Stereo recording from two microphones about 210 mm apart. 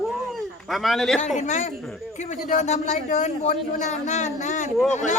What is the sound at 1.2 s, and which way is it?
Speech, 35° left (ahead or behind).